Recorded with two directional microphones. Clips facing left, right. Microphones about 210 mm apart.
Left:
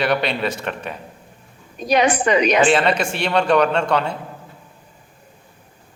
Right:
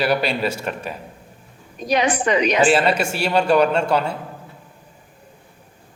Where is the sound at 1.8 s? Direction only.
65° left (ahead or behind).